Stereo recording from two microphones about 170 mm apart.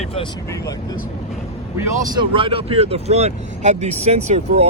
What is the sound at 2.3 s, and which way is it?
Speech, 30° right (ahead or behind).